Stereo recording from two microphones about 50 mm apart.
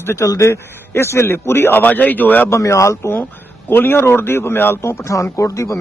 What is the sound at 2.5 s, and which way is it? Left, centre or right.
Speech, left.